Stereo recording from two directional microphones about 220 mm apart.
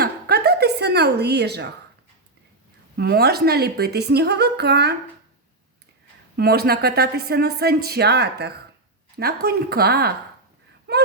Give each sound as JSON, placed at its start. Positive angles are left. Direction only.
{"t": 0.0, "sound": "a sound", "side_deg": -45}
{"t": 2.9, "sound": "speech", "side_deg": -45}
{"t": 6.3, "sound": "speech", "side_deg": -45}